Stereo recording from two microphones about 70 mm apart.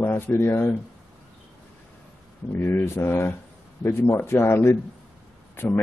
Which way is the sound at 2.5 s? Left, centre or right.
Left.